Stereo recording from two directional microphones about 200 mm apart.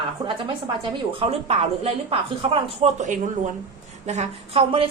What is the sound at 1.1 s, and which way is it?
A woman's voice, 30° right (ahead or behind).